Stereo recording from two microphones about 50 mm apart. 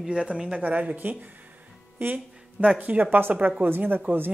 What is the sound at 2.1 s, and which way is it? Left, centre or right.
Speech, right.